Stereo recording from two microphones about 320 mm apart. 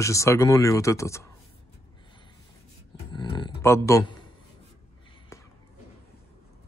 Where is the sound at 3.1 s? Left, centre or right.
Centre.